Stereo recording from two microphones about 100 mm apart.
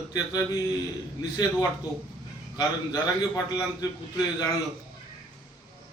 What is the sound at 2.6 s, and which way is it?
A man's voice, 35° left (ahead or behind).